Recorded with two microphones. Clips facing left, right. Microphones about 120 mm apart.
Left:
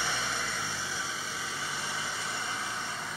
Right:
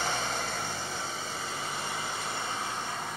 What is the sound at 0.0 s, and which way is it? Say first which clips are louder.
Vehicle: right 2 dB; 40° right (ahead or behind).